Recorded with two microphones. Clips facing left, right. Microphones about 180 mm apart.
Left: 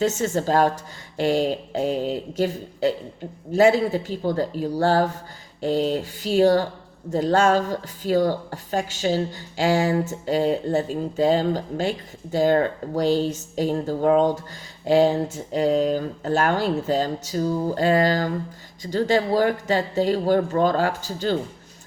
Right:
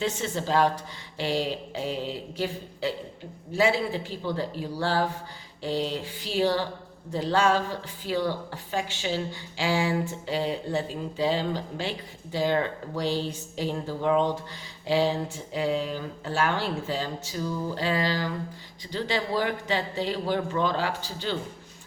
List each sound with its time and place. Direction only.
0.0 s speech: 45° left (ahead or behind)